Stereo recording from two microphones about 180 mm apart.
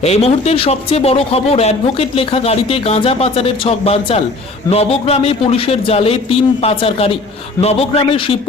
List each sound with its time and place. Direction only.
0.0 s a man's voice: 35° left (ahead or behind)